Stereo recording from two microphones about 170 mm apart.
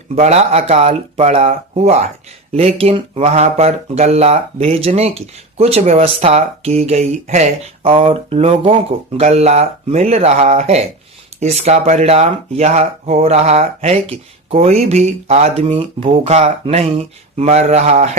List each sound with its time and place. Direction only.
0.2 s speech: 40° right (ahead or behind)